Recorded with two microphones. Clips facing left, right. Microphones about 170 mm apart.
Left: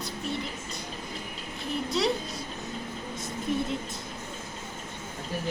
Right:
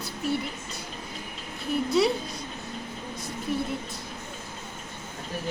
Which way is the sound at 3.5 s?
20° left (ahead or behind).